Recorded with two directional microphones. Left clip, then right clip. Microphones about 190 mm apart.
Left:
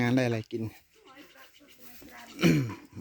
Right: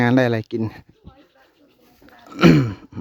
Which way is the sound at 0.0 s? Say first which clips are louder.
Right 10 dB; 35° right (ahead or behind).